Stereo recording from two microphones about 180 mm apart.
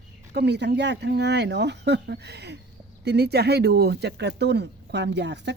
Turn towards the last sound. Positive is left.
turn(degrees=-70)  # may be behind; listen again after turning